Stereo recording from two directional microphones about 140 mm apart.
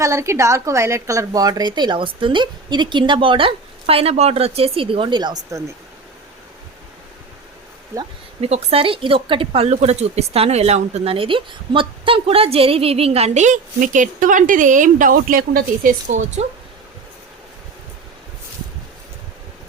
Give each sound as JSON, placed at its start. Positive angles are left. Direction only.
{"t": 0.0, "sound": "a woman's voice", "side_deg": -20}
{"t": 5.5, "sound": "speech", "side_deg": -20}
{"t": 8.4, "sound": "speech", "side_deg": -50}